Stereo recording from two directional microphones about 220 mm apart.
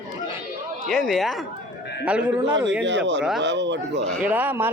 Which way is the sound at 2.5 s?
55° right (ahead or behind).